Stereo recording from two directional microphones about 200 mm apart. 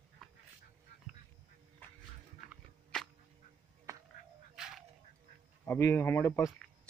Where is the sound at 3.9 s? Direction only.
15° right (ahead or behind).